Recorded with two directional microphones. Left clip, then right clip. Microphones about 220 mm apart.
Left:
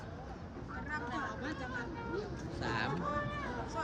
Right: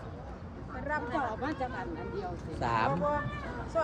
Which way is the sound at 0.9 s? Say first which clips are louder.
Right 7 dB; 25° right (ahead or behind).